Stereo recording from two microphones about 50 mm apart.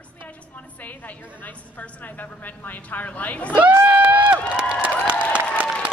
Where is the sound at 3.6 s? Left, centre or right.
Right.